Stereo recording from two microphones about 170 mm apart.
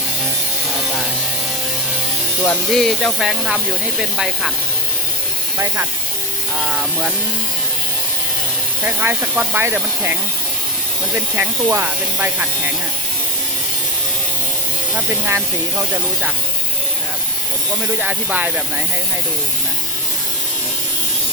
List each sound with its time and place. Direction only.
2.4 s speech: 5° left (ahead or behind)
5.5 s speech: 15° right (ahead or behind)
8.8 s speech: 10° right (ahead or behind)
11.3 s speech: 10° right (ahead or behind)
18.0 s speech: 10° right (ahead or behind)